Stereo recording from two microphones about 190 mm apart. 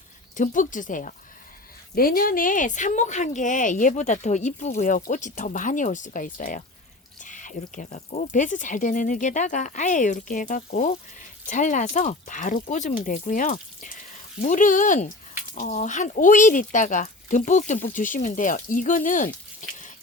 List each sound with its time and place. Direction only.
0.3 s speech: 45° left (ahead or behind)